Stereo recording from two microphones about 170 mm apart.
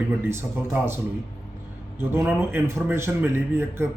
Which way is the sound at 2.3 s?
15° right (ahead or behind).